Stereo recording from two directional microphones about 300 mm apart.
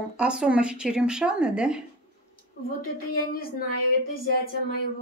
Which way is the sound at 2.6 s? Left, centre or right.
Left.